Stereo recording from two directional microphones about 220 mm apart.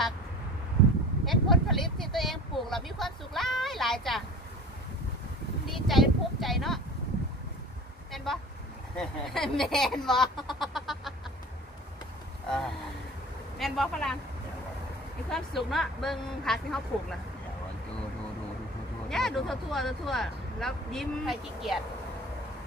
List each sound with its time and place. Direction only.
1.2 s speech: centre (ahead or behind)
5.7 s speech: centre (ahead or behind)
8.9 s speech: centre (ahead or behind)
10.6 s a sound: centre (ahead or behind)
12.4 s speech: centre (ahead or behind)
15.2 s speech: centre (ahead or behind)
19.0 s speech: centre (ahead or behind)